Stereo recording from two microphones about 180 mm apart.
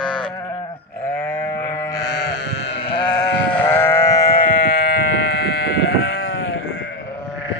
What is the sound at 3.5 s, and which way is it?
Sheep, 10° left (ahead or behind).